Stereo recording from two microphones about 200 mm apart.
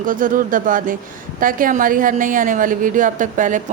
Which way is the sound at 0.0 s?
40° right (ahead or behind).